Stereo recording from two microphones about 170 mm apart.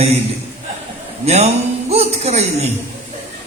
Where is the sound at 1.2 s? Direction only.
40° right (ahead or behind).